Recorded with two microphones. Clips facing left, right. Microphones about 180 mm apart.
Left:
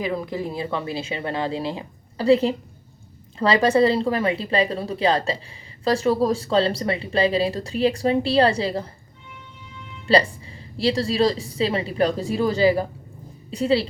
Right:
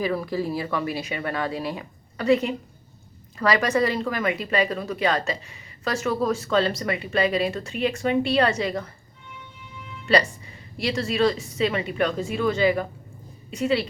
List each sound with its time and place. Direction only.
0.0 s speech: 20° left (ahead or behind)
10.1 s speech: 30° left (ahead or behind)